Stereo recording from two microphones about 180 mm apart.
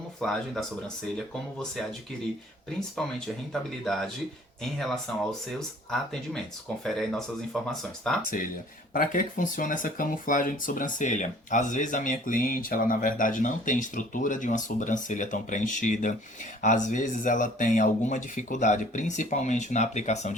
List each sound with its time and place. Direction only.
0.2 s speech: centre (ahead or behind)
2.9 s speech: 5° left (ahead or behind)
8.9 s speech: 50° left (ahead or behind)